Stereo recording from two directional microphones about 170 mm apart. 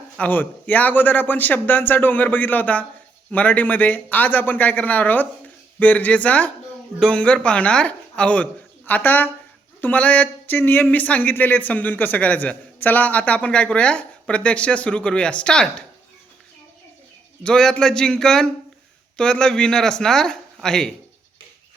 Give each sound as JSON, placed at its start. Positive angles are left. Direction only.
{"t": 0.2, "sound": "speech", "side_deg": 10}
{"t": 17.4, "sound": "speech", "side_deg": 5}